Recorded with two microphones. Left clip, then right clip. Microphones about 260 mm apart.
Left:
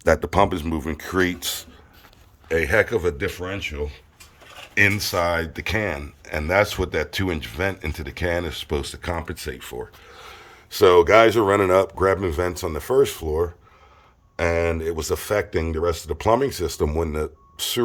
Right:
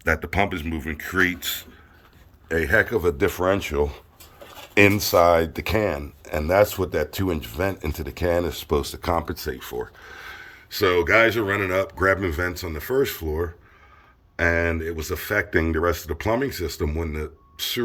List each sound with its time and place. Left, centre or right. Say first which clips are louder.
0.2 s speech: left 4 dB; left
2.5 s speech: left 1 dB; centre
3.2 s speech: right 6 dB; centre